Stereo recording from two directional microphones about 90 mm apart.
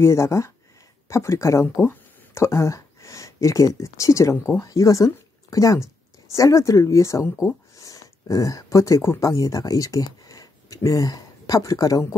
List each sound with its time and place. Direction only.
0.0 s speech: 30° left (ahead or behind)